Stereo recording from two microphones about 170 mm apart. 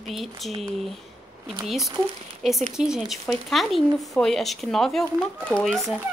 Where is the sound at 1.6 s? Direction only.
Centre (ahead or behind).